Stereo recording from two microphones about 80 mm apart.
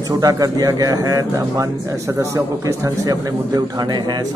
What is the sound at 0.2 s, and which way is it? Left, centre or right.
A man's voice, right.